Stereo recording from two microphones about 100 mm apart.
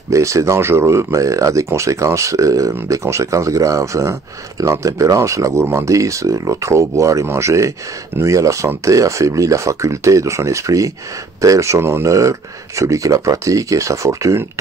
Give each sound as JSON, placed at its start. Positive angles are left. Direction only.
{"t": 0.1, "sound": "speech", "side_deg": -30}